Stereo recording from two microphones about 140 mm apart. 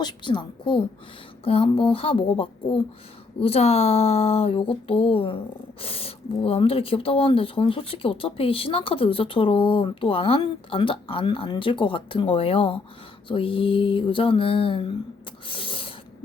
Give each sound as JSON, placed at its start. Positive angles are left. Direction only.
{"t": 0.0, "sound": "speech", "side_deg": 35}
{"t": 15.4, "sound": "snort", "side_deg": 40}